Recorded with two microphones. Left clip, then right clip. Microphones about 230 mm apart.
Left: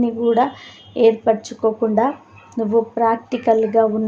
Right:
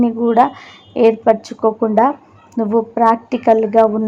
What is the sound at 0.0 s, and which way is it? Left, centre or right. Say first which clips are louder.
Speech: right 4 dB; centre.